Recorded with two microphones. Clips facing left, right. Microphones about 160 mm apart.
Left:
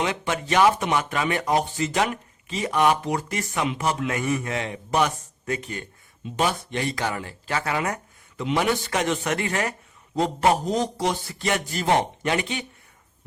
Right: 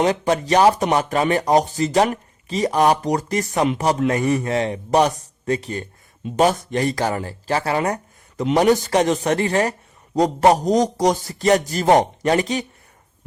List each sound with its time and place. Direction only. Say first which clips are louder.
0.0 s speech: right 8 dB; 40° right (ahead or behind)